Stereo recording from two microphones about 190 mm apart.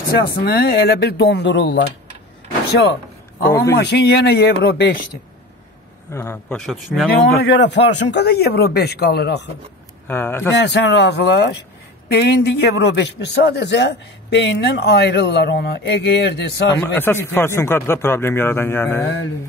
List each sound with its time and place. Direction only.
0.4 s a man's voice: 55° left (ahead or behind)
2.7 s a sound: 60° left (ahead or behind)
3.7 s a man's voice: 60° left (ahead or behind)
6.1 s speech: 10° left (ahead or behind)
7.5 s a man's voice: 65° left (ahead or behind)
10.0 s speech: 10° left (ahead or behind)
10.5 s a man's voice: 65° left (ahead or behind)
16.7 s speech: 10° left (ahead or behind)